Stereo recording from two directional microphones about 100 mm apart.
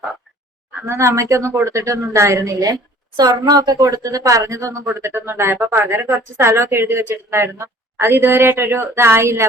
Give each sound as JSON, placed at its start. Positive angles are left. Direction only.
{"t": 0.9, "sound": "a woman's voice", "side_deg": -30}